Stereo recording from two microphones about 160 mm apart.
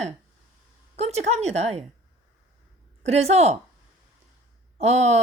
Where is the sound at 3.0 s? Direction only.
40° right (ahead or behind).